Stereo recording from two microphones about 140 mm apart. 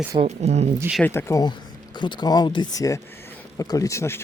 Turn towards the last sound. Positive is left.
turn(degrees=20)  # may be behind; listen again after turning